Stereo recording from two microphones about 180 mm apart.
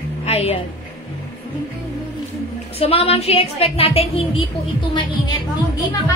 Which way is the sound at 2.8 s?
35° left (ahead or behind).